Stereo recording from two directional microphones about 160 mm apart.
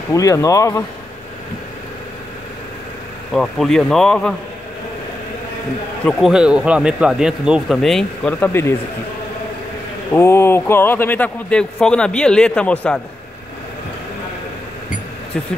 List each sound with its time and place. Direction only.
0.1 s speech: 20° left (ahead or behind)
3.3 s speech: 5° left (ahead or behind)
6.0 s speech: 5° right (ahead or behind); by 8.7 s 15° left (ahead or behind)
10.1 s speech: 15° left (ahead or behind)